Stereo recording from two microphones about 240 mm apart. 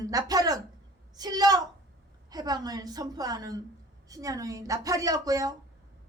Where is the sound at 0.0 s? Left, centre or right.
Centre.